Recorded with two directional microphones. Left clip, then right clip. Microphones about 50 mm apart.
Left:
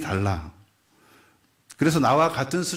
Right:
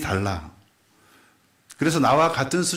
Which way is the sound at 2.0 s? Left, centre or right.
Centre.